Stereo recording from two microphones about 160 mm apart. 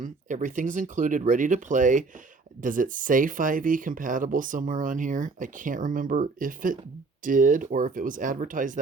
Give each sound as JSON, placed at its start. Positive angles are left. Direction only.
{"t": 0.0, "sound": "speech", "side_deg": -50}